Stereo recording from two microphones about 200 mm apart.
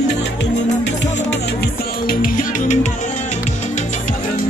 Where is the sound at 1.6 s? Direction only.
45° left (ahead or behind).